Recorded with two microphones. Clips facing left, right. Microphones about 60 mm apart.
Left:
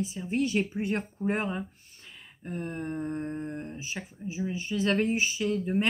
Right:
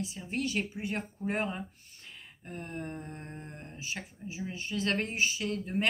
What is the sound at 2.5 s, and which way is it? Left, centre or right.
Speech, centre.